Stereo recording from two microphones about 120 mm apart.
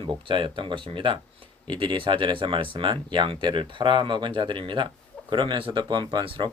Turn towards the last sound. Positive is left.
turn(degrees=-45)  # may be behind; listen again after turning